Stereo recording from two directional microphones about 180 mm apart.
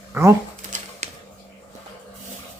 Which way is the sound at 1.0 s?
40° right (ahead or behind).